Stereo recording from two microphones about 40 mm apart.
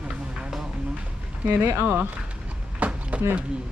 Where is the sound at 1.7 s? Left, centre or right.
Right.